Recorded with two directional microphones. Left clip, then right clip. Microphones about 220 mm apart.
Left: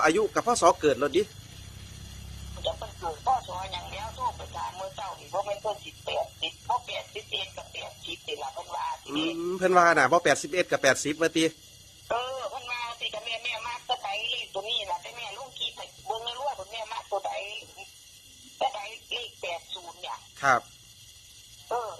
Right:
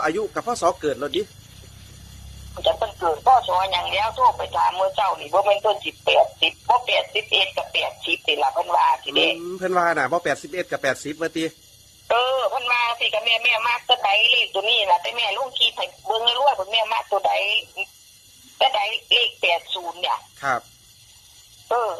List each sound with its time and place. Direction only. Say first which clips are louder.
0.0 s a man's voice: even; 5° left (ahead or behind)
2.6 s speech: right 12 dB; 30° right (ahead or behind)
9.4 s a man's voice: even; 5° left (ahead or behind)
12.0 s speech: right 11 dB; 25° right (ahead or behind)
20.4 s speech: left 3 dB; 5° left (ahead or behind)
21.7 s speech: right 10 dB; 35° right (ahead or behind)